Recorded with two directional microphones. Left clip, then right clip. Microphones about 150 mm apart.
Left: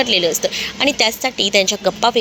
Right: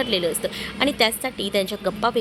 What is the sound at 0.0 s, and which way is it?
A woman's voice, 10° left (ahead or behind).